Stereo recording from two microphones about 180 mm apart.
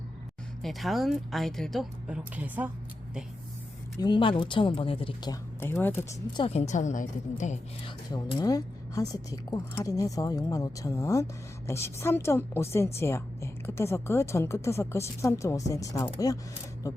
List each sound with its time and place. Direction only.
0.6 s speech: centre (ahead or behind)
3.9 s speech: 25° left (ahead or behind)
5.5 s a woman's voice: 10° left (ahead or behind)
6.5 s a woman's voice: 40° left (ahead or behind)
7.9 s a woman's voice: 25° left (ahead or behind)